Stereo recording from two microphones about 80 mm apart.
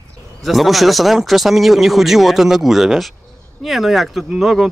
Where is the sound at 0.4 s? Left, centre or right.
Centre.